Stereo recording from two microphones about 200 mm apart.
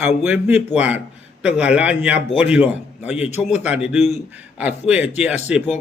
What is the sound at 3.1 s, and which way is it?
Speech, 35° left (ahead or behind).